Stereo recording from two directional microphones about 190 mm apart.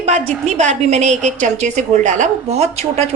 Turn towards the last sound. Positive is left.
turn(degrees=-35)  # may be behind; listen again after turning